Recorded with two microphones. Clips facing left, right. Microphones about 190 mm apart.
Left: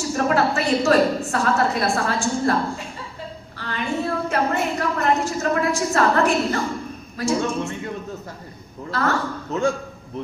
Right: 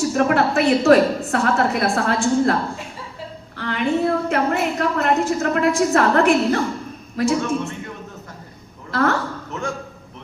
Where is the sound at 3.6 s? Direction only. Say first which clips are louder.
Right 5 dB; 65° right (ahead or behind).